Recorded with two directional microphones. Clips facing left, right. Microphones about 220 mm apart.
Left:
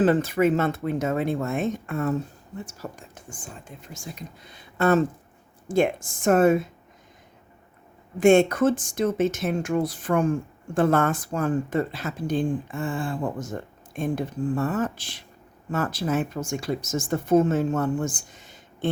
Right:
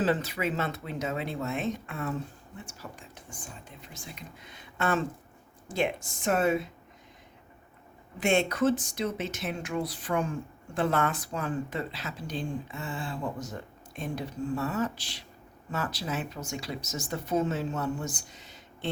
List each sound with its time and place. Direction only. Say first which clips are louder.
0.0 s speech: left 8 dB; 50° left (ahead or behind)
8.2 s speech: left 8 dB; 50° left (ahead or behind)